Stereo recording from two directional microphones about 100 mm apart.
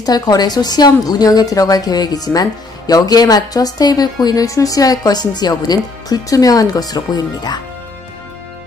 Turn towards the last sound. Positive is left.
turn(degrees=40)  # may be behind; listen again after turning